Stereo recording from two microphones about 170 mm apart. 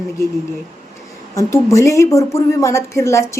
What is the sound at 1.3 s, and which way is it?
A woman's voice, 15° left (ahead or behind).